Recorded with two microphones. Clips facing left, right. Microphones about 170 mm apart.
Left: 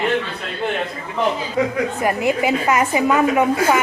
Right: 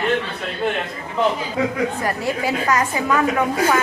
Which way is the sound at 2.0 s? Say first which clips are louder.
Left 4 dB; 20° left (ahead or behind).